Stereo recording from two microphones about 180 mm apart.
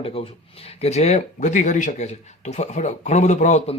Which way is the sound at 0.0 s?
30° left (ahead or behind).